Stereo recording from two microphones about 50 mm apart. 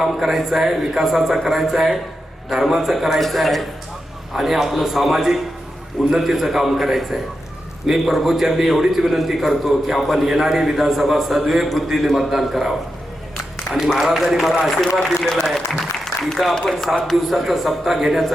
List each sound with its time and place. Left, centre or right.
0.0 s a man's voice: centre
13.7 s a man's voice: centre
14.9 s speech: centre
15.8 s applause: centre
16.8 s speech: centre
17.2 s a man's voice: centre